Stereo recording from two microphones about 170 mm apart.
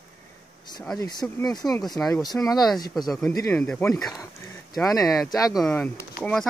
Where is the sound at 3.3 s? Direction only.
20° left (ahead or behind).